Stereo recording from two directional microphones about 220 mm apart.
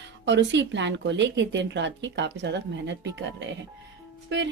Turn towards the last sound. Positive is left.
turn(degrees=-55)  # may be behind; listen again after turning